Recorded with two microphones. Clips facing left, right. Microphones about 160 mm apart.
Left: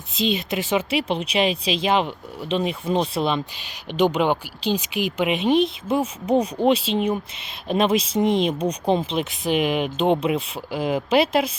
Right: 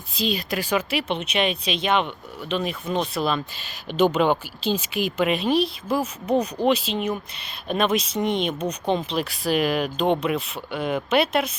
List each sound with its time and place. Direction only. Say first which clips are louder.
0.1 s speech: left 2 dB; 20° left (ahead or behind)